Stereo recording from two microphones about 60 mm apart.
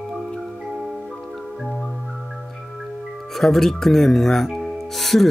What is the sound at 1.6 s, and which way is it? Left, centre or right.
Music, centre.